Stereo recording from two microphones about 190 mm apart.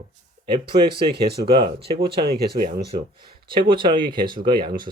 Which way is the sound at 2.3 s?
50° right (ahead or behind).